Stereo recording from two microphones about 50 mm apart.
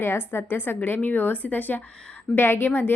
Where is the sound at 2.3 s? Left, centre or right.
Left.